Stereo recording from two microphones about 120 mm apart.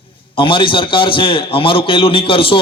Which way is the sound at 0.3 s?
45° left (ahead or behind).